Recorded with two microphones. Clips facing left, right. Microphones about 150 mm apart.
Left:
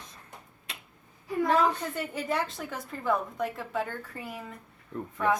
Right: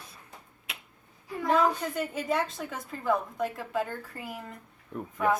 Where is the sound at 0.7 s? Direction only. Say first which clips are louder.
Right 1 dB; centre (ahead or behind).